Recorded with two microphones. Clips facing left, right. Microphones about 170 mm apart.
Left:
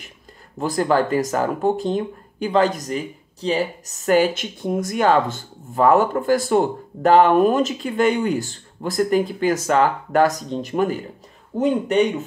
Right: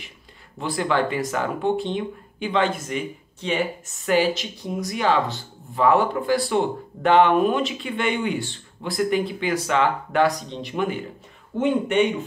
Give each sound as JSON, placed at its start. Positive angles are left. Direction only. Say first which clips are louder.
{"t": 0.6, "sound": "speech", "louder": "left 4 dB", "side_deg": 40}